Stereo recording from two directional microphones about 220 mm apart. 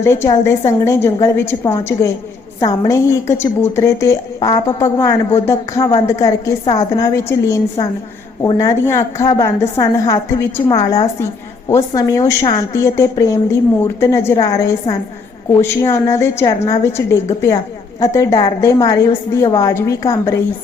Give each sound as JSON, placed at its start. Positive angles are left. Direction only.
{"t": 0.0, "sound": "a woman's voice", "side_deg": 10}